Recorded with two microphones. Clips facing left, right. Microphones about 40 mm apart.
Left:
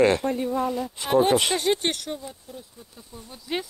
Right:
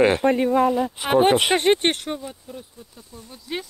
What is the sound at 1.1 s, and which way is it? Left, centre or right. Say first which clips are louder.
Speech: right 3 dB; right.